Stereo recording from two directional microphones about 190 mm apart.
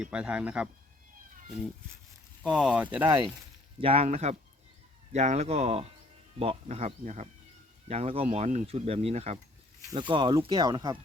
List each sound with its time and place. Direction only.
0.0 s speech: 5° right (ahead or behind)
2.4 s speech: centre (ahead or behind); by 3.3 s 15° right (ahead or behind)
3.8 s speech: 30° right (ahead or behind)